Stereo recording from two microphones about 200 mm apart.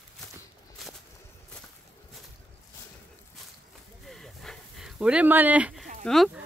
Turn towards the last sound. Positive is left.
turn(degrees=0)  # may be behind; listen again after turning